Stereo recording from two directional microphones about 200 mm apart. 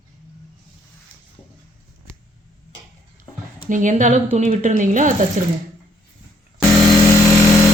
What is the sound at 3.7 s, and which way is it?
Speech, 40° right (ahead or behind).